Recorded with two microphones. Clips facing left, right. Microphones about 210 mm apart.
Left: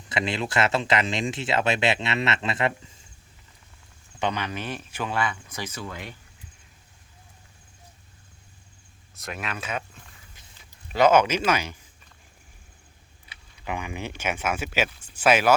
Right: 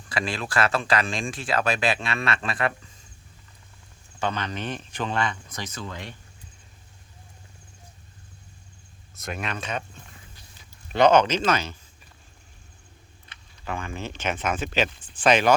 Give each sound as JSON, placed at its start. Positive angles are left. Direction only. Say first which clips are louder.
{"t": 0.1, "sound": "speech", "louder": "left 2 dB", "side_deg": 25}
{"t": 4.2, "sound": "speech", "louder": "even", "side_deg": 10}
{"t": 9.1, "sound": "speech", "louder": "right 2 dB", "side_deg": 0}
{"t": 10.9, "sound": "speech", "louder": "right 1 dB", "side_deg": 5}
{"t": 13.2, "sound": "speech", "louder": "left 1 dB", "side_deg": 10}